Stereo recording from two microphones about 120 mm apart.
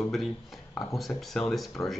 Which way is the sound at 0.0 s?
Centre (ahead or behind).